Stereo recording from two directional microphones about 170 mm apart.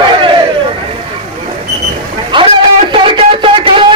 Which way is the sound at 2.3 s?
30° right (ahead or behind).